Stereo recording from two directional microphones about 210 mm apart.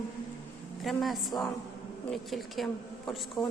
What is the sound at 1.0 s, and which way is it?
A woman's voice, centre (ahead or behind).